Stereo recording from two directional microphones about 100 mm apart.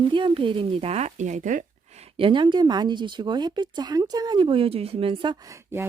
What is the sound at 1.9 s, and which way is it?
Speech, 80° right.